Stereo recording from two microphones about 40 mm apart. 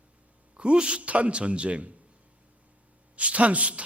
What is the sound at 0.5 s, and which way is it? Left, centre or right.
A man's voice, right.